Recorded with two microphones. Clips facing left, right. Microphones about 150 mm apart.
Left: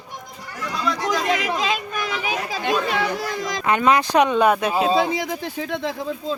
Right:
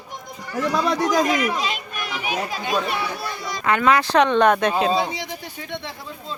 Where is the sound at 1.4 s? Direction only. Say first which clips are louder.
Even; 90° left.